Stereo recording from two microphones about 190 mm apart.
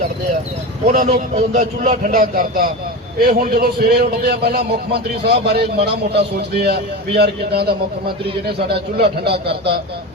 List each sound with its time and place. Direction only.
0.9 s a man's voice: 40° right (ahead or behind); by 9.4 s 55° right (ahead or behind)